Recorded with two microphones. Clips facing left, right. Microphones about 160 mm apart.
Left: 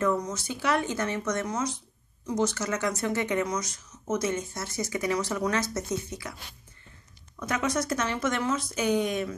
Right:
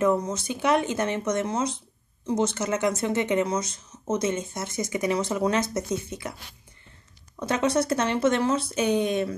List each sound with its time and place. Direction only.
0.0 s speech: 25° right (ahead or behind)
7.3 s speech: 30° right (ahead or behind)